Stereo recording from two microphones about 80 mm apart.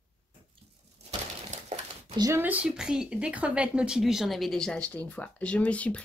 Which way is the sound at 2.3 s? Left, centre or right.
Centre.